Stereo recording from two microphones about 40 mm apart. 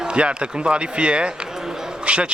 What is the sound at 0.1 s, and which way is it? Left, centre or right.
Speech, right.